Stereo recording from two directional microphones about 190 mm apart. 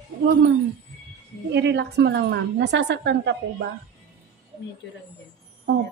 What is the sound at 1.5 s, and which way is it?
A woman's voice, 65° right (ahead or behind).